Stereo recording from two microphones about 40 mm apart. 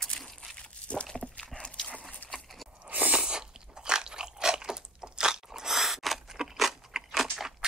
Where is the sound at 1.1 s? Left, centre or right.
Left.